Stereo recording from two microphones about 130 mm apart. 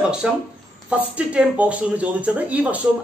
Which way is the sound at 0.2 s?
5° right (ahead or behind).